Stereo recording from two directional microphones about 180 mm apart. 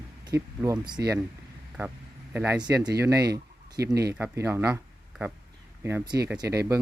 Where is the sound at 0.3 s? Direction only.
20° right (ahead or behind).